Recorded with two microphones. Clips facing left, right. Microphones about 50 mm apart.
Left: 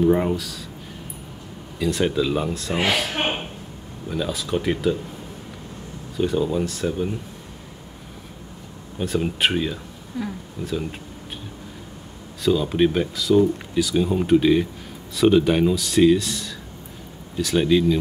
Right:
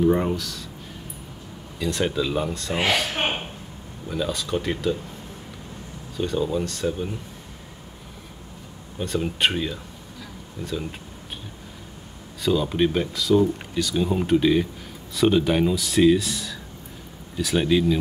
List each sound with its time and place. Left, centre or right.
0.0 s speech: centre
1.8 s speech: centre
6.1 s speech: centre
8.9 s speech: centre
10.1 s speech: left
10.6 s speech: centre
12.4 s speech: centre